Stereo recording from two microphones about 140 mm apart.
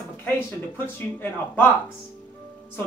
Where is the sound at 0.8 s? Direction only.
15° left (ahead or behind).